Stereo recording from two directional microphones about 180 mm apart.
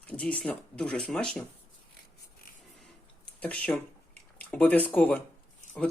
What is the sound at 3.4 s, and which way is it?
Speech, 10° left (ahead or behind).